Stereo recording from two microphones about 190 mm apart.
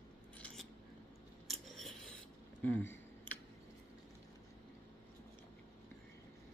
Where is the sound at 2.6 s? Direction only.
10° left (ahead or behind).